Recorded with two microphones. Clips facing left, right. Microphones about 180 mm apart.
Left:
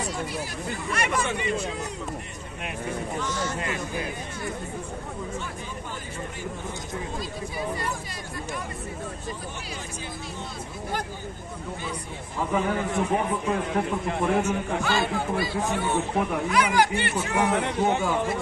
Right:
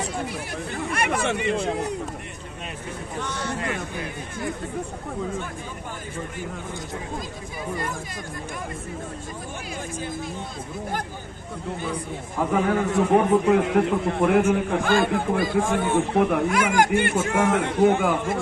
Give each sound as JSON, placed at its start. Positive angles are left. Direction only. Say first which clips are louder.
{"t": 0.7, "sound": "speech", "louder": "right 2 dB", "side_deg": -55}
{"t": 3.2, "sound": "speech", "louder": "even", "side_deg": -60}
{"t": 12.4, "sound": "a man's voice", "louder": "right 4 dB", "side_deg": -70}